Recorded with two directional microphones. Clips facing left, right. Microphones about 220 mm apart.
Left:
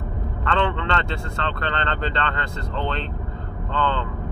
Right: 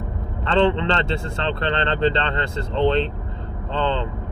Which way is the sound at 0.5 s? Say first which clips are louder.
Right 5 dB; 25° right (ahead or behind).